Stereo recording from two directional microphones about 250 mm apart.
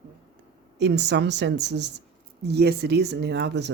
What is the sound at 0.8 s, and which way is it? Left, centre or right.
Speech, right.